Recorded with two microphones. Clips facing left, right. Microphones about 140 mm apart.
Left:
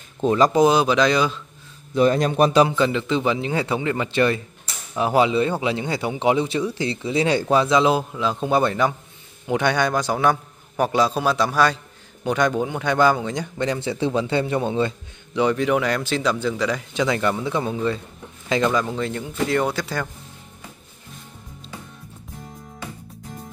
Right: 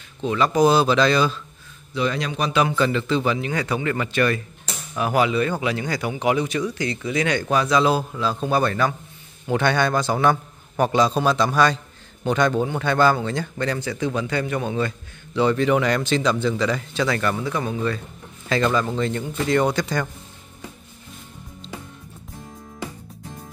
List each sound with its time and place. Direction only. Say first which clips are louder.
0.2 s speech: left 4 dB; 35° left (ahead or behind)
0.6 s speech: even; 15° left (ahead or behind)
2.0 s speech: left 7 dB; 45° left (ahead or behind)
2.6 s speech: left 2 dB; 20° left (ahead or behind)
15.4 s speech: right 1 dB; 10° left (ahead or behind)